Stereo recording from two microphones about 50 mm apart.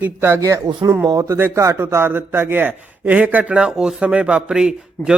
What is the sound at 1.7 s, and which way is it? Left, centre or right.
A man's voice, right.